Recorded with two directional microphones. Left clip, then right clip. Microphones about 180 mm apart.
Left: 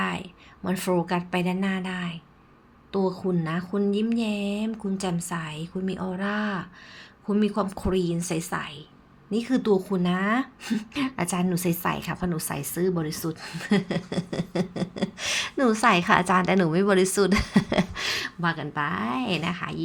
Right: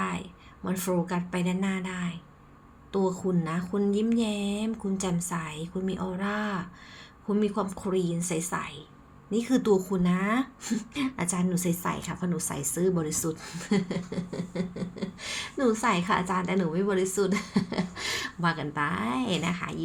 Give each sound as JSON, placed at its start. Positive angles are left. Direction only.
{"t": 0.0, "sound": "speech", "side_deg": 25}
{"t": 13.4, "sound": "speech", "side_deg": 20}
{"t": 14.1, "sound": "speech", "side_deg": 45}